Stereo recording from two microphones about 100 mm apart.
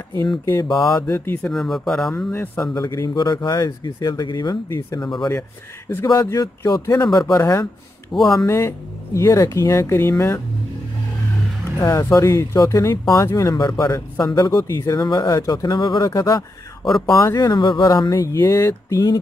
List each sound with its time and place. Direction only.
0.6 s speech: 50° left (ahead or behind)
0.9 s speech: 20° left (ahead or behind)
1.4 s speech: 5° left (ahead or behind)
2.3 s speech: 20° left (ahead or behind)
2.7 s speech: 35° left (ahead or behind)
6.2 s speech: 30° left (ahead or behind)
8.1 s speech: 5° left (ahead or behind)
8.5 s speech: 25° left (ahead or behind)
11.8 s speech: 30° left (ahead or behind); by 17.9 s 50° left (ahead or behind)
18.1 s speech: 30° left (ahead or behind)